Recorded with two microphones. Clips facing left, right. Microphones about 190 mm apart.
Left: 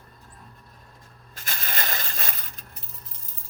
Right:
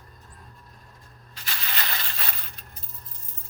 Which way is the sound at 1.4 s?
45° left (ahead or behind).